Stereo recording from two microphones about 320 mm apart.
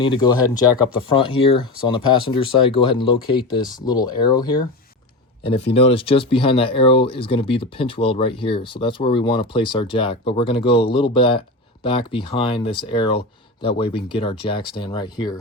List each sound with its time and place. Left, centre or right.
0.0 s speech: centre